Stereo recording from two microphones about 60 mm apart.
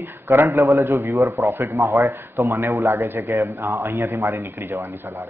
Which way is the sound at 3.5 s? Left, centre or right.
Right.